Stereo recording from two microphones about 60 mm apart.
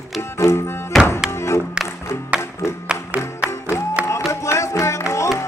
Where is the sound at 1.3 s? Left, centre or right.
Left.